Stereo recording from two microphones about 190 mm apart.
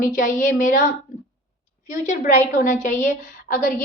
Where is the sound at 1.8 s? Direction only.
40° left (ahead or behind).